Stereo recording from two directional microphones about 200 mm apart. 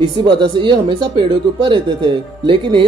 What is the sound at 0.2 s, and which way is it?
Speech, 25° right (ahead or behind).